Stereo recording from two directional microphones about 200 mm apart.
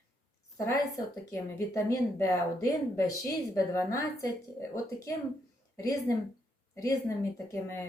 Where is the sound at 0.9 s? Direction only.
15° left (ahead or behind).